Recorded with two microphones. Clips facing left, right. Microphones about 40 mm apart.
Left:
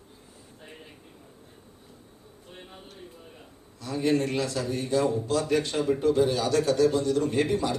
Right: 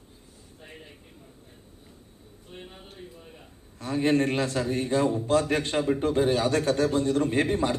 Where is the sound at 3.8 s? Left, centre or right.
Right.